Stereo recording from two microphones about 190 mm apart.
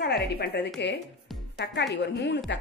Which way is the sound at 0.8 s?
65° left (ahead or behind).